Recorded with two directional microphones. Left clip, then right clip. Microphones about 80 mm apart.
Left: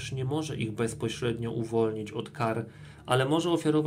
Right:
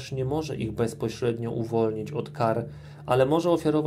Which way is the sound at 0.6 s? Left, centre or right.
Centre.